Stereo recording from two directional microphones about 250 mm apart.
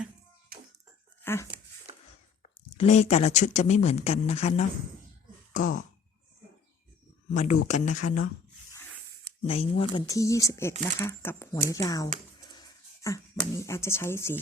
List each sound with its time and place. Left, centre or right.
1.2 s speech: centre
2.4 s speech: left
7.3 s speech: left
9.5 s speech: left
12.5 s a sound: centre
13.5 s speech: centre